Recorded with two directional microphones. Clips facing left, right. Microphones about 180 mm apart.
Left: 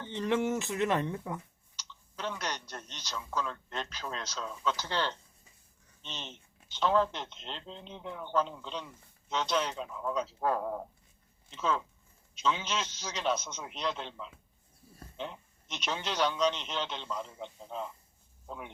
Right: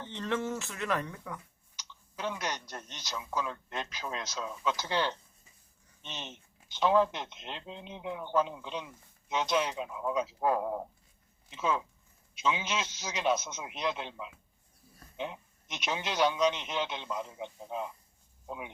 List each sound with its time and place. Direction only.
0.1 s speech: 15° left (ahead or behind)
1.7 s speech: 10° right (ahead or behind)